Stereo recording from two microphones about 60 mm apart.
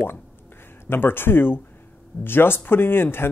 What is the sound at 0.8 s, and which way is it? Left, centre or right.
A man's voice, left.